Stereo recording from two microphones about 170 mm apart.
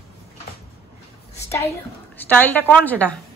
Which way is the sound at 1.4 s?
15° left (ahead or behind).